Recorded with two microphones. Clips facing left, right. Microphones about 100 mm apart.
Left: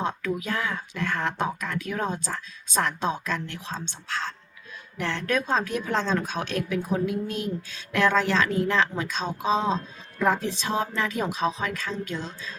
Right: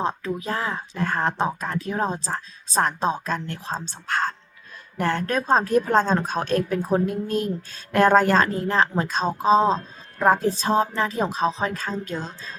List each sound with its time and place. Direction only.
0.0 s speech: 30° right (ahead or behind)